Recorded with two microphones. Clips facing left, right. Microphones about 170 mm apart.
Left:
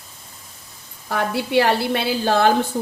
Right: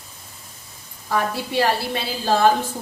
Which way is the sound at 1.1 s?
65° left (ahead or behind).